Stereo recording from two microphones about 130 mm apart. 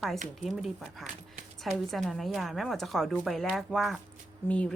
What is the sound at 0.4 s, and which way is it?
A woman's voice, centre (ahead or behind).